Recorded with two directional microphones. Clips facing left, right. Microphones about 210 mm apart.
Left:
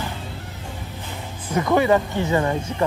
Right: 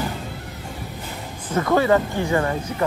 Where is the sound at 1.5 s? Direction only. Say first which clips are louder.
Even; 15° left (ahead or behind).